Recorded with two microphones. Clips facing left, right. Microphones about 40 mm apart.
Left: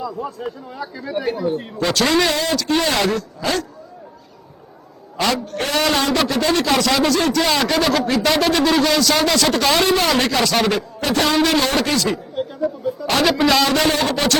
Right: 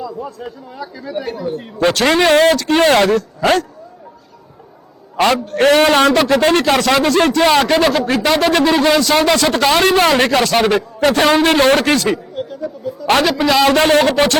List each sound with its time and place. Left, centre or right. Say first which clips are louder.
0.0 s speech: even; centre
1.8 s a man's voice: right 5 dB; right
5.1 s a man's voice: right 6 dB; right
8.6 s a man's voice: right 3 dB; right
12.3 s a sound: left 2 dB; centre
13.2 s speech: right 1 dB; centre
13.7 s a man's voice: right 6 dB; right